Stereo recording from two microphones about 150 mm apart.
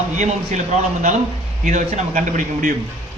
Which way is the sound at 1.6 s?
55° right (ahead or behind).